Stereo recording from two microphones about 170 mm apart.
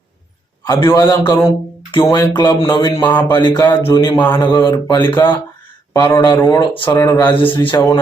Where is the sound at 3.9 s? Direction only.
30° left (ahead or behind).